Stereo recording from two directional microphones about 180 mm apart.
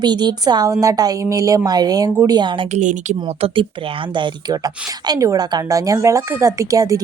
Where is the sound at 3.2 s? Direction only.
30° right (ahead or behind).